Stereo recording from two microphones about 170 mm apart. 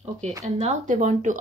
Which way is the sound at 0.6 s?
40° right (ahead or behind).